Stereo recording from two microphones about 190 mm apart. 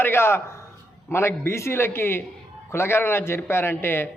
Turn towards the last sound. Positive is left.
turn(degrees=10)  # may be behind; listen again after turning